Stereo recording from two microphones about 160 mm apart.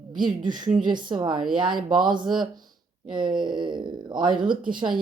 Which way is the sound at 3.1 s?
30° right (ahead or behind).